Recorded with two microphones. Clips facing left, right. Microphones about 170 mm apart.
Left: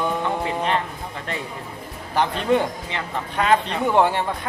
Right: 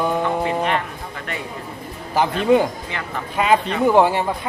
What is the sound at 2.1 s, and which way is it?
Speech, 5° right (ahead or behind).